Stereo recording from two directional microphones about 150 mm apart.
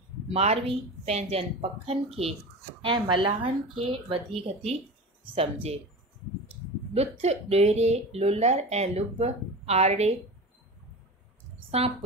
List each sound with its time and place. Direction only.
0.3 s speech: 45° right (ahead or behind)
6.9 s speech: 45° right (ahead or behind)
11.7 s speech: 45° right (ahead or behind)